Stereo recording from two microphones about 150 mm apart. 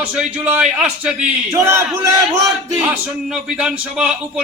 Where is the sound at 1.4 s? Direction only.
15° right (ahead or behind).